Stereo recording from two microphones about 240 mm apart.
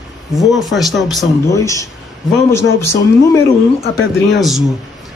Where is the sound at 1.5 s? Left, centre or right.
Centre.